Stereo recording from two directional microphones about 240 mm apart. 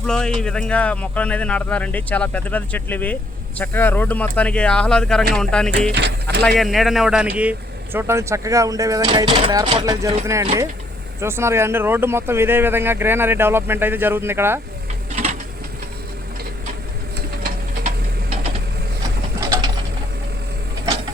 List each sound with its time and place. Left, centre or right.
0.1 s speech: centre
5.9 s speech: right
6.6 s speech: centre
15.1 s a sound: right
19.4 s bird: centre